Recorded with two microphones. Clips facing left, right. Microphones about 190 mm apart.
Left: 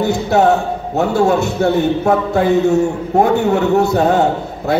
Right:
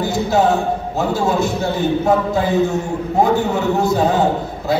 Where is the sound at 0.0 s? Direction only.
60° left (ahead or behind).